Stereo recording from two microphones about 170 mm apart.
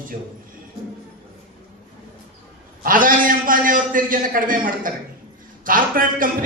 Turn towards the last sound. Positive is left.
turn(degrees=-55)  # may be behind; listen again after turning